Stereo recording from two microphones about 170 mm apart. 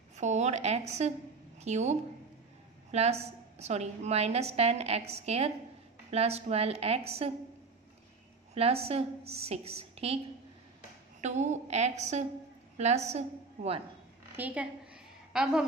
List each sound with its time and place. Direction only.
0.1 s a woman's voice: 45° right (ahead or behind)
8.5 s a woman's voice: 35° right (ahead or behind)
14.3 s a woman's voice: 10° right (ahead or behind)